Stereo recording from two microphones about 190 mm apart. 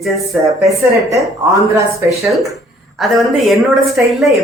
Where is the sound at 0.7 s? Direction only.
15° right (ahead or behind).